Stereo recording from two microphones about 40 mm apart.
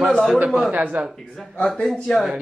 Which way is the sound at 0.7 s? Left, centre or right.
Right.